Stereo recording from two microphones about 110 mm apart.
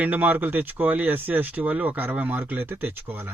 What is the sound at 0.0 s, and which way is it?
Speech, 15° right (ahead or behind).